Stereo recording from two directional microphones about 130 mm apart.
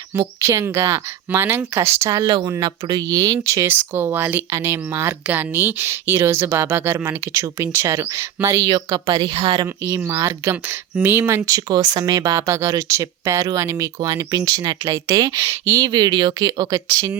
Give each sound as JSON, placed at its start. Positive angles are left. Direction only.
{"t": 0.1, "sound": "speech", "side_deg": -20}
{"t": 2.2, "sound": "a woman's voice", "side_deg": -35}
{"t": 9.8, "sound": "speech", "side_deg": -25}